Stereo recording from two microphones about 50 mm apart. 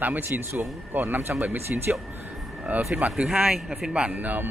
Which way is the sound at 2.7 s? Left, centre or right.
Right.